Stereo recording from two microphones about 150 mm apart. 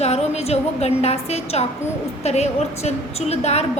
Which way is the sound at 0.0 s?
45° left (ahead or behind).